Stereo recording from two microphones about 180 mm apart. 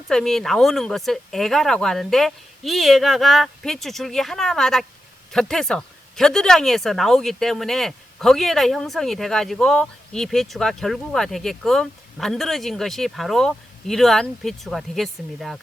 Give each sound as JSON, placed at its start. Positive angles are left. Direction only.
{"t": 0.1, "sound": "speech", "side_deg": 0}